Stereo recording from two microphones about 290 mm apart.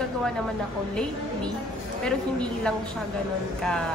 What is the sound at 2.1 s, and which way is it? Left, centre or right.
Speech, centre.